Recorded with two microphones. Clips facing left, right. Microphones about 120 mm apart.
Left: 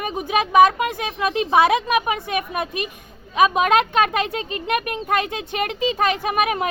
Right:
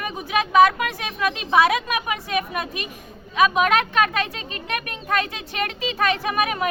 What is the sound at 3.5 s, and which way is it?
Speech, 30° left (ahead or behind).